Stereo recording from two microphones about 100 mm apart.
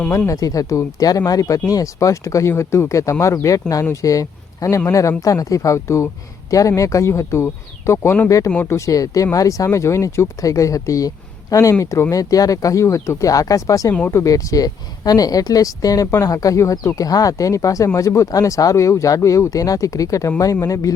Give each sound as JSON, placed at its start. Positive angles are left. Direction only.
{"t": 0.3, "sound": "speech", "side_deg": 35}